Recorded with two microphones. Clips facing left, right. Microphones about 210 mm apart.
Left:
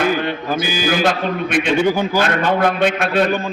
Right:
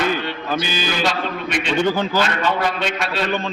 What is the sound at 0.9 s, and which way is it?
Speech, 50° left (ahead or behind).